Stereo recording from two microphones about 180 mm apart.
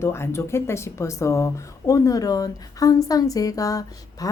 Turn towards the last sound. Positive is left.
turn(degrees=20)  # may be behind; listen again after turning